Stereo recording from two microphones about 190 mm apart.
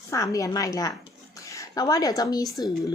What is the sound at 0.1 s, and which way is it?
Speech, 15° left (ahead or behind).